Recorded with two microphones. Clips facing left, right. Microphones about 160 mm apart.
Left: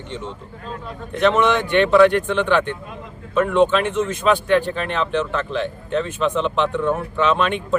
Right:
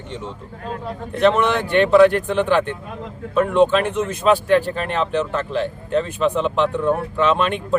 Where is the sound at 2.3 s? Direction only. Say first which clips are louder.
Right 1 dB; 5° right (ahead or behind).